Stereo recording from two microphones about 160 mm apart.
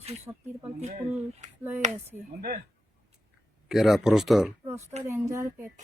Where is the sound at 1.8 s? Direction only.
50° right (ahead or behind).